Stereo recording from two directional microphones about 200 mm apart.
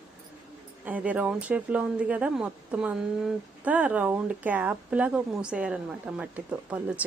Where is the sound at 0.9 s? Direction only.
5° right (ahead or behind).